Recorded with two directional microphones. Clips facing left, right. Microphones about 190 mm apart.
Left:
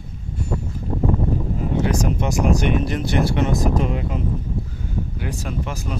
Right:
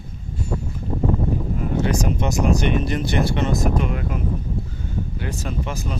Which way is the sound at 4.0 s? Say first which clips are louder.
Left 1 dB; 25° left (ahead or behind).